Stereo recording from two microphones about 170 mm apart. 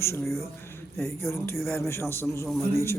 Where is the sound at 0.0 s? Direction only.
15° left (ahead or behind).